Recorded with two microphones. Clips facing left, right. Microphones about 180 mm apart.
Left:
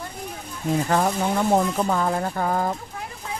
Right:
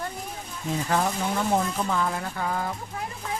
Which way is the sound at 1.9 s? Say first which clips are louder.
Left 4 dB; 40° left (ahead or behind).